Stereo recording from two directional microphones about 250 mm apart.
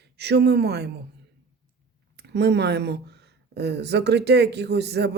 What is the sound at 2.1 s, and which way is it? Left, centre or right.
Speech, right.